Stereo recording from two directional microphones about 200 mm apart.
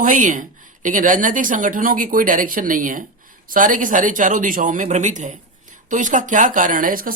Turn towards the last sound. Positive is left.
turn(degrees=-45)  # may be behind; listen again after turning